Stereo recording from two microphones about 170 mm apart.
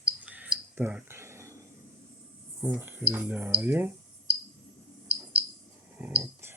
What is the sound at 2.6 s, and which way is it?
Speech, 10° right (ahead or behind).